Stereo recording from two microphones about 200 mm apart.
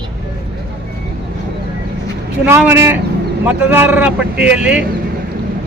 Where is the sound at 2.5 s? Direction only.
10° right (ahead or behind).